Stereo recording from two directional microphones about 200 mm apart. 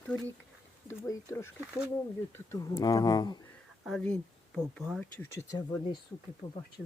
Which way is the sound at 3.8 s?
Centre (ahead or behind).